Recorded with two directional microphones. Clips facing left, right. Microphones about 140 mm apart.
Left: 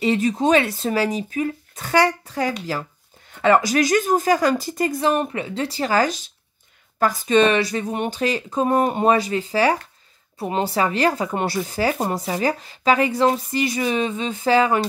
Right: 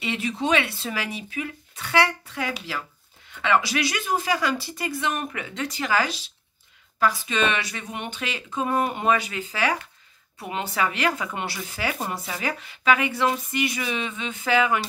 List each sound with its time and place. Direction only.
0.0 s speech: 40° left (ahead or behind)